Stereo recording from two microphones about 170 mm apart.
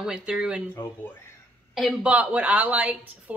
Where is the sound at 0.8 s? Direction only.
15° left (ahead or behind).